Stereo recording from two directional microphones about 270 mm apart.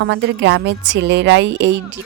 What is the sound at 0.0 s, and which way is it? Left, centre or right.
A woman's voice, right.